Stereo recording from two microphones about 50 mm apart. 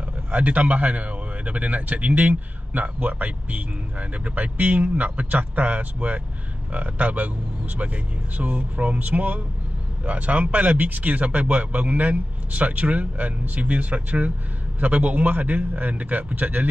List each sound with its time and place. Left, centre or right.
0.3 s a man's voice: right